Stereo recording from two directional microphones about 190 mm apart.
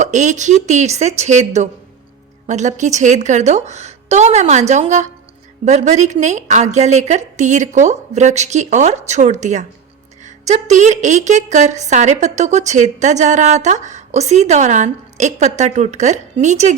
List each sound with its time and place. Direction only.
0.0 s a woman's voice: 40° right (ahead or behind)